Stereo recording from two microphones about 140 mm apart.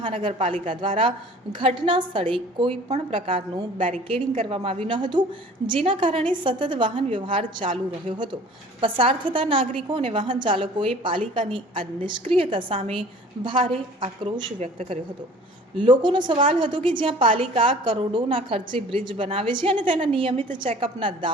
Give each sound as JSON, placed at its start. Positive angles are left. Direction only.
{"t": 0.0, "sound": "a woman's voice", "side_deg": -35}
{"t": 8.8, "sound": "a woman's voice", "side_deg": -40}
{"t": 14.6, "sound": "speech", "side_deg": -50}
{"t": 15.8, "sound": "a woman's voice", "side_deg": -35}